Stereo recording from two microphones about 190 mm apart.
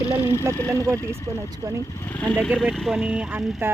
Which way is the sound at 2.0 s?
10° left (ahead or behind).